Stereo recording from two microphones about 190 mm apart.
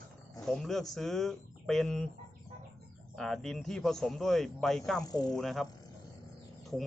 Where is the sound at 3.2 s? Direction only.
Centre (ahead or behind).